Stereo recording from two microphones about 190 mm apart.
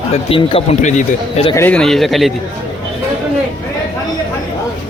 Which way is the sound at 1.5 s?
10° left (ahead or behind).